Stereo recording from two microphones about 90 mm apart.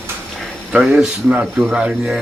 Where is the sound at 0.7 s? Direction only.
10° right (ahead or behind).